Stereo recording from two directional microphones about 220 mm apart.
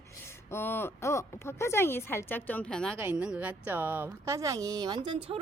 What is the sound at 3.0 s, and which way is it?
A woman's voice, 5° right (ahead or behind).